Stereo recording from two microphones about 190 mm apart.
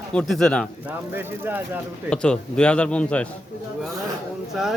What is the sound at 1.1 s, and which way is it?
Speech, 10° right (ahead or behind).